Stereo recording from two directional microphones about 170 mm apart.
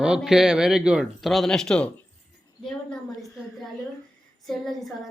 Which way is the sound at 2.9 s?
Centre (ahead or behind).